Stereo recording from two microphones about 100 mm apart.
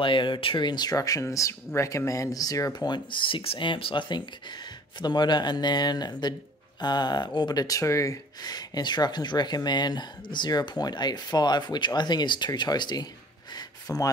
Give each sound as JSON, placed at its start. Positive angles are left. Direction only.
{"t": 0.0, "sound": "speech", "side_deg": 55}